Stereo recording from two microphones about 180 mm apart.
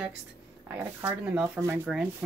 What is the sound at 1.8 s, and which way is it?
Speech, centre (ahead or behind).